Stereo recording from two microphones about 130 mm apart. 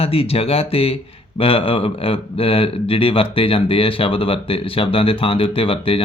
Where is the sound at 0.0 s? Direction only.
50° left (ahead or behind).